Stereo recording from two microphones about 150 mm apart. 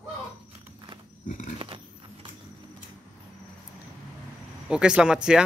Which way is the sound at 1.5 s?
35° right (ahead or behind).